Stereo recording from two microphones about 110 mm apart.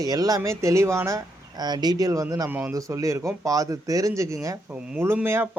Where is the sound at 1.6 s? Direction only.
40° right (ahead or behind).